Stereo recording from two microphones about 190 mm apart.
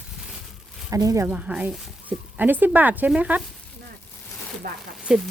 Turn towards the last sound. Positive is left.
turn(degrees=-5)  # may be behind; listen again after turning